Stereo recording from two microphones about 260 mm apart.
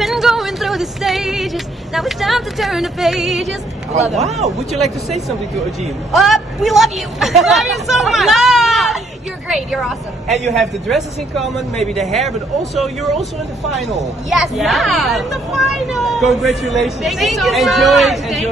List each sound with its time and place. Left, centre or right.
0.0 s speech: centre
4.2 s a man's voice: right
6.1 s a woman's voice: centre